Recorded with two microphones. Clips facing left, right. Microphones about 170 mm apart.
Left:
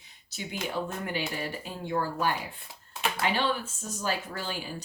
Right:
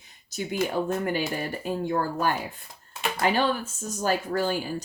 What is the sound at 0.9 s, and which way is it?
Speech, 45° right (ahead or behind).